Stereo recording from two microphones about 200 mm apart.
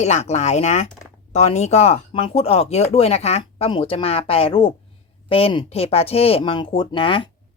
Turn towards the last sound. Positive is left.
turn(degrees=25)  # may be behind; listen again after turning